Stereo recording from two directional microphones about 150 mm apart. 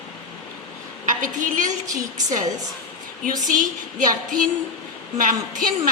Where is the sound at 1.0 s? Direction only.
60° right (ahead or behind).